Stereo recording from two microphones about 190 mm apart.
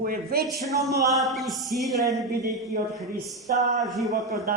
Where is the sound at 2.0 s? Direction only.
15° right (ahead or behind).